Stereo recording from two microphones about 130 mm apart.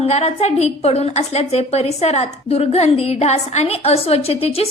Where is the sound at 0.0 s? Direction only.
55° left (ahead or behind).